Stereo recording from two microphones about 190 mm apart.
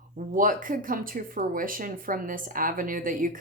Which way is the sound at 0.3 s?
45° right (ahead or behind).